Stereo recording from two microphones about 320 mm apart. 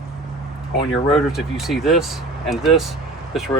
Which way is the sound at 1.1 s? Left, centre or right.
Centre.